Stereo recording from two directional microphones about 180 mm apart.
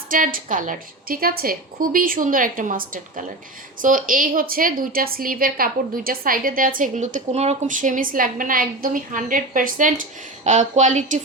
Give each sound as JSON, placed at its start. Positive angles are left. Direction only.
{"t": 0.1, "sound": "speech", "side_deg": -50}